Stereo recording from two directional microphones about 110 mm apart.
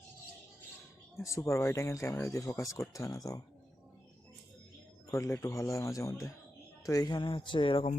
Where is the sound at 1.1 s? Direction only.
25° left (ahead or behind).